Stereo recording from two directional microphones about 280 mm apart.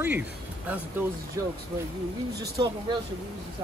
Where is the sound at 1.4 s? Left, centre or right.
Centre.